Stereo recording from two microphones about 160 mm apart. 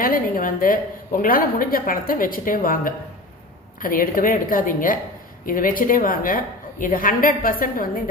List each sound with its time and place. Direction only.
0.0 s a woman's voice: 60° left (ahead or behind)